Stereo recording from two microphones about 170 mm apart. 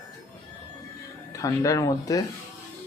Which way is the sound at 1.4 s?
20° left (ahead or behind).